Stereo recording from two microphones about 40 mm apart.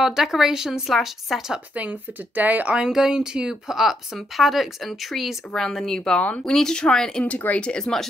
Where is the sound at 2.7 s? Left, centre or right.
Centre.